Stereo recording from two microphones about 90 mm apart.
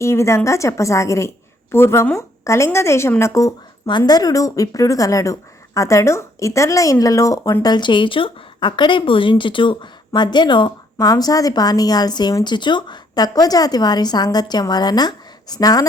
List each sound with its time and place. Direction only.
0.0 s a woman's voice: 30° left (ahead or behind)
3.8 s a woman's voice: 55° left (ahead or behind)
7.6 s speech: 55° left (ahead or behind)
10.1 s speech: 55° left (ahead or behind)
11.0 s a woman's voice: 45° left (ahead or behind)